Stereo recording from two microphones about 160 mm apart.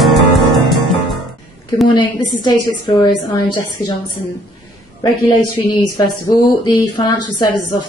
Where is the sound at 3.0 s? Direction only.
25° left (ahead or behind).